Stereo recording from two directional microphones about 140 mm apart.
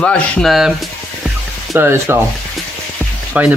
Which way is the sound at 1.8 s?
15° right (ahead or behind).